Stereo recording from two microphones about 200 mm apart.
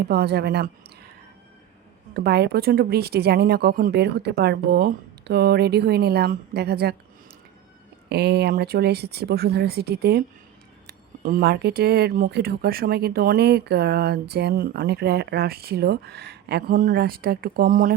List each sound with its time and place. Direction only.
0.1 s speech: 55° right (ahead or behind)
2.1 s speech: 55° right (ahead or behind)
8.1 s speech: 55° right (ahead or behind)
10.8 s speech: 45° right (ahead or behind)